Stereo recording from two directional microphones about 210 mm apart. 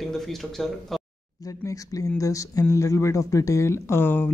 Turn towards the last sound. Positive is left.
turn(degrees=10)  # may be behind; listen again after turning